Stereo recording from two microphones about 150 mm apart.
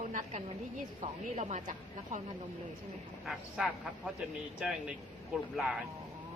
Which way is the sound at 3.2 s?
5° right (ahead or behind).